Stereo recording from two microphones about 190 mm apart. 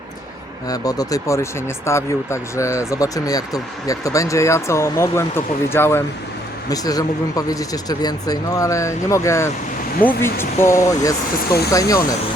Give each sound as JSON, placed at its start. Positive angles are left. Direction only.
{"t": 0.7, "sound": "speech", "side_deg": 20}
{"t": 11.4, "sound": "speech", "side_deg": 55}
{"t": 11.7, "sound": "speech", "side_deg": 15}